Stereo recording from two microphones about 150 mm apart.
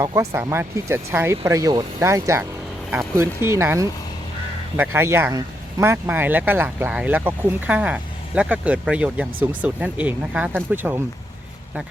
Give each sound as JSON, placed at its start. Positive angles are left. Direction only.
{"t": 0.0, "sound": "speech", "side_deg": -20}